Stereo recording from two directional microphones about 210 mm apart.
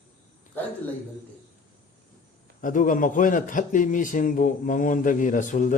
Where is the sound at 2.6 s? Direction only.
40° left (ahead or behind).